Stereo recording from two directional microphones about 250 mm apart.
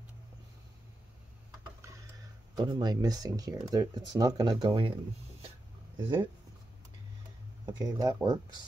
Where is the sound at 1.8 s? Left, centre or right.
Centre.